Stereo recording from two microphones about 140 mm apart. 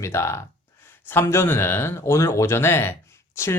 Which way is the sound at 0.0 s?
20° left (ahead or behind).